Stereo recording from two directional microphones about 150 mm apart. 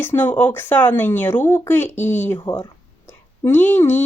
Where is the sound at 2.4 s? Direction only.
30° left (ahead or behind).